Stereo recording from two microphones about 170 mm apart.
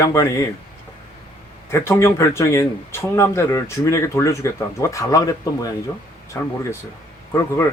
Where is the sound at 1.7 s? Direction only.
15° left (ahead or behind).